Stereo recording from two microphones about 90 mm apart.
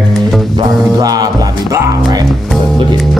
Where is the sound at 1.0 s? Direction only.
45° right (ahead or behind).